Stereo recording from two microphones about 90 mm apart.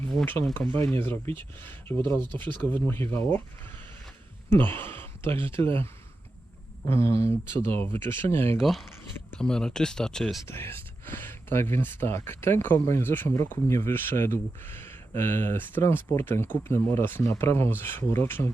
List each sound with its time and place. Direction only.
0.9 s speech: 25° left (ahead or behind)
4.4 s speech: 25° left (ahead or behind)
8.5 s speech: centre (ahead or behind)
10.4 s speech: 25° left (ahead or behind)